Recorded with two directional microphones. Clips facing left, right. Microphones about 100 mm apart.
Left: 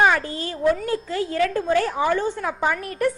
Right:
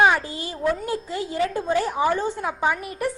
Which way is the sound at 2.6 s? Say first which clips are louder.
Left 2 dB; 5° right (ahead or behind).